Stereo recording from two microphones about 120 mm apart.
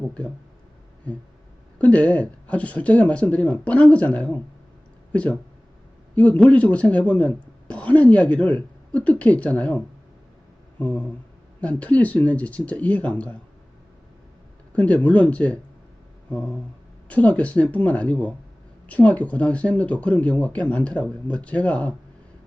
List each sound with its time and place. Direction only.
1.8 s speech: 10° left (ahead or behind)
10.8 s a sound: 10° left (ahead or behind)
11.6 s speech: 10° left (ahead or behind)
14.7 s speech: 10° left (ahead or behind)